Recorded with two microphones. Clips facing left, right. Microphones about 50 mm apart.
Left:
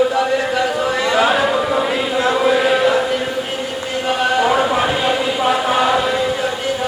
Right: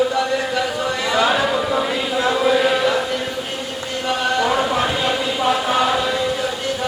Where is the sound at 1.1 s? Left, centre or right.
Centre.